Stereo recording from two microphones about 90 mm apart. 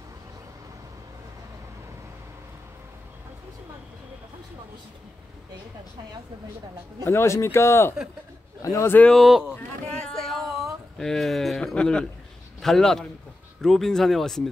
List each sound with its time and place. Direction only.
7.1 s speech: 30° left (ahead or behind)
9.1 s speech: 5° right (ahead or behind)
9.9 s a sound: 5° left (ahead or behind)
12.6 s speech: 5° left (ahead or behind)